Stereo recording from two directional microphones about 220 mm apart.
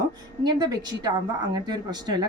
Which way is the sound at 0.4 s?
20° right (ahead or behind).